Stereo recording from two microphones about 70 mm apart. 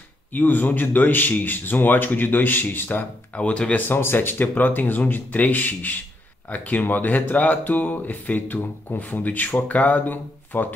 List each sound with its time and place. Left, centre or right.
0.3 s speech: left
3.9 s speech: left